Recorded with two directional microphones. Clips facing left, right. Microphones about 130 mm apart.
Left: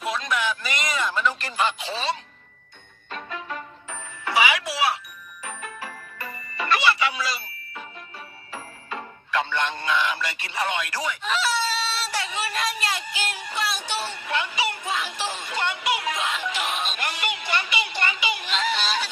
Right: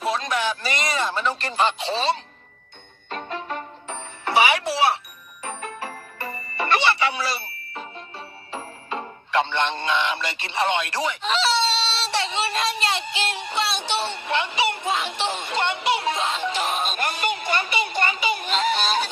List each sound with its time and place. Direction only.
0.0 s a sound: 35° right (ahead or behind)
3.1 s music: 30° right (ahead or behind)
8.5 s speech: 30° right (ahead or behind)
15.2 s music: 25° right (ahead or behind); by 19.1 s 50° right (ahead or behind)